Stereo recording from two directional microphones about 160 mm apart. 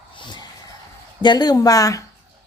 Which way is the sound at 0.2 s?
30° left (ahead or behind).